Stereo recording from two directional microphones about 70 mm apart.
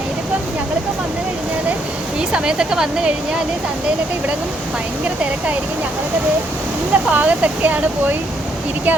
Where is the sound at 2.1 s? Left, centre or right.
Centre.